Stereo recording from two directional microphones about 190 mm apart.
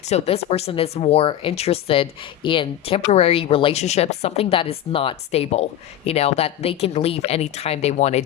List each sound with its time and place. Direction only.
0.0 s speech: 35° left (ahead or behind)